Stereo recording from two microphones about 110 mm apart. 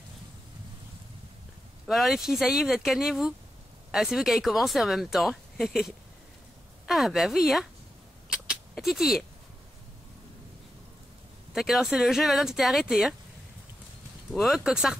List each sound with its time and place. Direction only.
1.9 s speech: centre (ahead or behind)
8.5 s a sound: centre (ahead or behind)
11.5 s speech: centre (ahead or behind)
14.3 s speech: centre (ahead or behind)